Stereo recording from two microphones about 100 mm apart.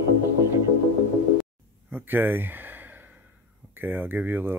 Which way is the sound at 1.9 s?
20° right (ahead or behind).